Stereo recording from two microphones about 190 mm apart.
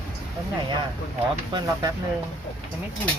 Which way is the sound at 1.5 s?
20° right (ahead or behind).